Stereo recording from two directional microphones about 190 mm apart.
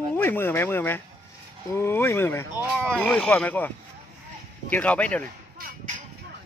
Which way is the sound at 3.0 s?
5° left (ahead or behind).